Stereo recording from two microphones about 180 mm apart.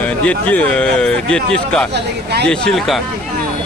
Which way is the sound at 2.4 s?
5° left (ahead or behind).